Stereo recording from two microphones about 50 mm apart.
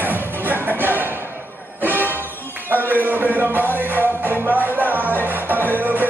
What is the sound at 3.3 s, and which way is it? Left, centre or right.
Music, right.